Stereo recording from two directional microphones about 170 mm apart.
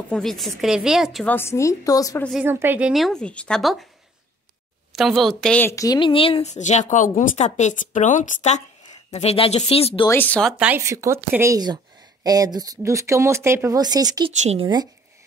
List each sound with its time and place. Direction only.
0.1 s a woman's voice: centre (ahead or behind)
1.3 s a woman's voice: 15° left (ahead or behind)
2.4 s a woman's voice: 10° right (ahead or behind)
4.9 s speech: centre (ahead or behind); by 10.0 s 35° left (ahead or behind)
10.0 s a woman's voice: 10° left (ahead or behind)
10.6 s a woman's voice: 15° right (ahead or behind)
14.4 s speech: 40° right (ahead or behind)